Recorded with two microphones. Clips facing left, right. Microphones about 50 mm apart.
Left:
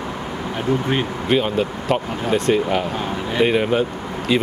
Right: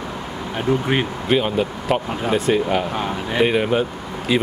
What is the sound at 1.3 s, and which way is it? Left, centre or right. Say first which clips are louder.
Speech: even; centre.